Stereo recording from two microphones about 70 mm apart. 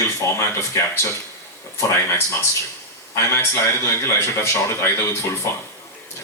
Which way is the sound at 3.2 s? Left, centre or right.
Left.